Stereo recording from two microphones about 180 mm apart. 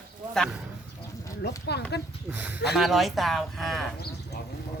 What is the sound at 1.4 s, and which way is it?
Speech, 65° left (ahead or behind).